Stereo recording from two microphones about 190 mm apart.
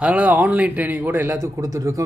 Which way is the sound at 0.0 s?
5° right (ahead or behind).